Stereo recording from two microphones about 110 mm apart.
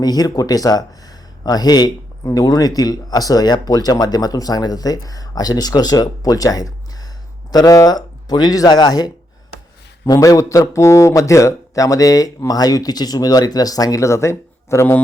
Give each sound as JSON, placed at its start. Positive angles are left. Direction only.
{"t": 0.0, "sound": "a man's voice", "side_deg": 35}